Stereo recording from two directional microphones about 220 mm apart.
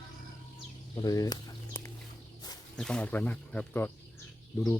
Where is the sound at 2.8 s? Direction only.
5° left (ahead or behind).